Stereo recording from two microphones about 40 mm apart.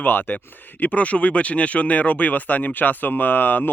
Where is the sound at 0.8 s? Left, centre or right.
Left.